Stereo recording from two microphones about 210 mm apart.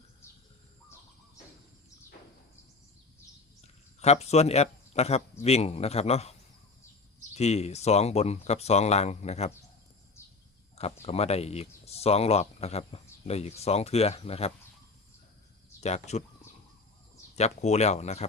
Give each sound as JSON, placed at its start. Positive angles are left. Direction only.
{"t": 3.6, "sound": "a man's voice", "side_deg": 30}
{"t": 7.3, "sound": "speech", "side_deg": 30}
{"t": 11.0, "sound": "speech", "side_deg": 30}
{"t": 15.8, "sound": "speech", "side_deg": 30}
{"t": 17.3, "sound": "speech", "side_deg": 30}